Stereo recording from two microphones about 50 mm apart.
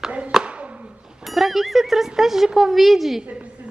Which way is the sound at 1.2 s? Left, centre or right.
Centre.